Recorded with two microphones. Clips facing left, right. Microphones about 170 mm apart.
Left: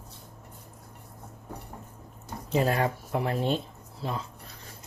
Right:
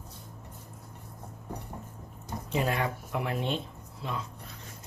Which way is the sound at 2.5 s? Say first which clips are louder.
Left 4 dB; 35° left (ahead or behind).